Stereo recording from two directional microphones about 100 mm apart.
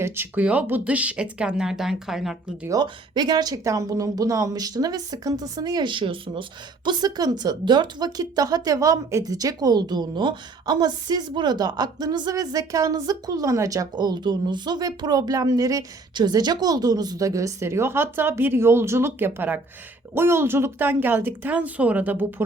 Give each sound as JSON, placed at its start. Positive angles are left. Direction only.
{"t": 0.0, "sound": "speech", "side_deg": -20}
{"t": 2.6, "sound": "a woman's voice", "side_deg": -45}
{"t": 6.8, "sound": "a woman's voice", "side_deg": -45}